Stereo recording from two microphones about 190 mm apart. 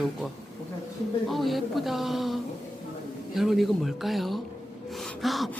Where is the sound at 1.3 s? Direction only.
Centre (ahead or behind).